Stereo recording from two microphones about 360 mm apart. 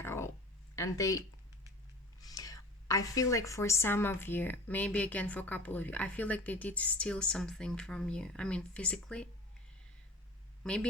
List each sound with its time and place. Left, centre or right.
0.0 s a sound: centre
0.8 s speech: centre
2.2 s a woman's voice: centre
10.6 s a woman's voice: centre